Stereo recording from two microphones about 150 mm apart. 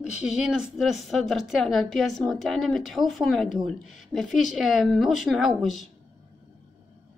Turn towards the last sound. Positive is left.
turn(degrees=0)  # may be behind; listen again after turning